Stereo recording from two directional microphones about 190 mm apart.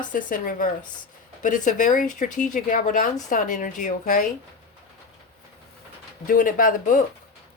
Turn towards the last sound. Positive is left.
turn(degrees=45)  # may be behind; listen again after turning